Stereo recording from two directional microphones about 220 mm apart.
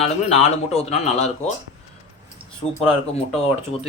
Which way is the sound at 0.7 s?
30° left (ahead or behind).